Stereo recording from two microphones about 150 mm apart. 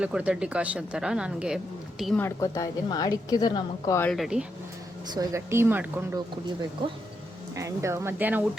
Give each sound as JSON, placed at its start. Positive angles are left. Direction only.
{"t": 0.0, "sound": "speech", "side_deg": -10}
{"t": 2.1, "sound": "a woman's voice", "side_deg": 20}
{"t": 4.0, "sound": "speech", "side_deg": 0}
{"t": 5.1, "sound": "speech", "side_deg": -20}
{"t": 7.5, "sound": "speech", "side_deg": -20}